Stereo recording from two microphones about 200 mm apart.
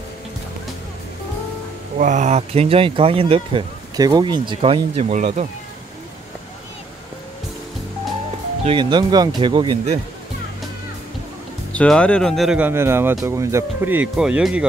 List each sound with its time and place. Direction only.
2.0 s speech: 40° right (ahead or behind)
8.6 s speech: 25° right (ahead or behind)
11.7 s speech: 5° left (ahead or behind)